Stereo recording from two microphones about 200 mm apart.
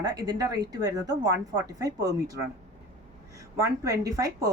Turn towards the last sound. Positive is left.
turn(degrees=-15)  # may be behind; listen again after turning